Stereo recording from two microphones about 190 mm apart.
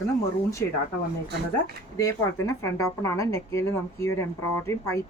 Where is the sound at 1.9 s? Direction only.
15° left (ahead or behind).